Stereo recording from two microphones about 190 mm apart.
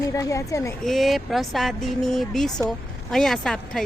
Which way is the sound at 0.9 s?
Centre (ahead or behind).